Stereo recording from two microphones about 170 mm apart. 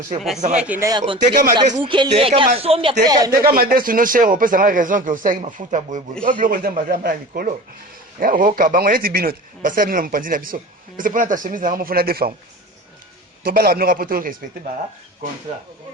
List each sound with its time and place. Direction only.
0.3 s speech: 45° right (ahead or behind)
0.6 s speech: 10° right (ahead or behind)
0.9 s speech: 30° right (ahead or behind)
3.0 s speech: 20° right (ahead or behind)
3.4 s speech: 60° right (ahead or behind)
13.4 s speech: 65° right (ahead or behind)